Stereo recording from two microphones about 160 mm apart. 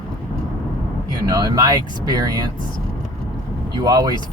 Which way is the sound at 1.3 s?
25° right (ahead or behind).